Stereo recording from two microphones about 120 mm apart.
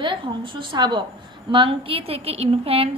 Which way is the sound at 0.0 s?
45° right (ahead or behind).